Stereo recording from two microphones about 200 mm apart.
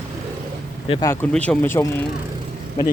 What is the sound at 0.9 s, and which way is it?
Speech, 20° left (ahead or behind).